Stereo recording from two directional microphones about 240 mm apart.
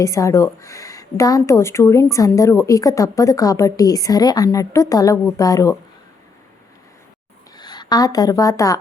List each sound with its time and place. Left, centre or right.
0.0 s a woman's voice: centre
7.5 s a woman's voice: centre